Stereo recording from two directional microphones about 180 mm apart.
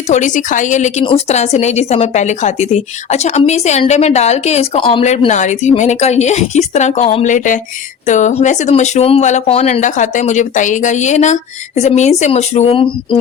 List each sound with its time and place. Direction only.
0.1 s a woman's voice: 45° left (ahead or behind)